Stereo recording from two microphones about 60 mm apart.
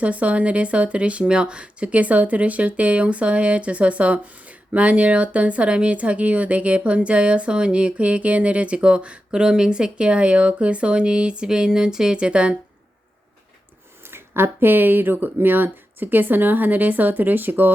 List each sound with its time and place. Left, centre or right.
0.0 s speech: right
14.1 s speech: right